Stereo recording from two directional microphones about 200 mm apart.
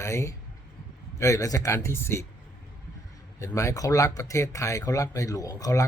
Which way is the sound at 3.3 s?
15° left (ahead or behind).